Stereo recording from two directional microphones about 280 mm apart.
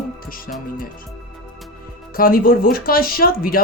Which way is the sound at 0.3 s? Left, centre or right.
Left.